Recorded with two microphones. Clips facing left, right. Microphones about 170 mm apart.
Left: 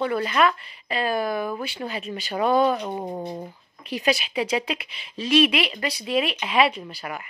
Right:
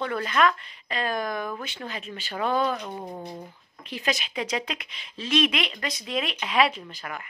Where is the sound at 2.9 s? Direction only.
30° left (ahead or behind).